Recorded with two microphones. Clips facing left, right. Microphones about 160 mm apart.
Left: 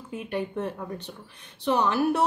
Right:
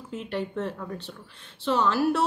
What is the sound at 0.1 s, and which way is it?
Speech, 15° left (ahead or behind).